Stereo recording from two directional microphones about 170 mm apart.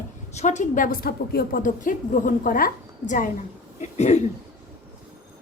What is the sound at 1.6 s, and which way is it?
A woman's voice, 50° left (ahead or behind).